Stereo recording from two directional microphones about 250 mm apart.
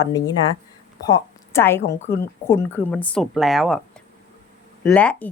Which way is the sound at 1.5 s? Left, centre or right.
Centre.